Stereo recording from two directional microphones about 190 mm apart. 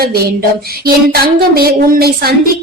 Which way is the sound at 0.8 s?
55° right (ahead or behind).